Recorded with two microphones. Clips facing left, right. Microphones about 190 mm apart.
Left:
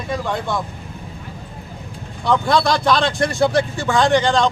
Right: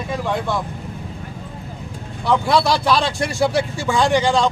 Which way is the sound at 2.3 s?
5° right (ahead or behind).